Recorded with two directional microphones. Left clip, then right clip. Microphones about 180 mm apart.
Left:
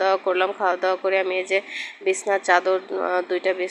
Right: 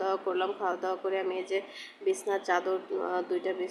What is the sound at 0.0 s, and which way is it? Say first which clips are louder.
A woman's voice: left 10 dB; 20° left (ahead or behind).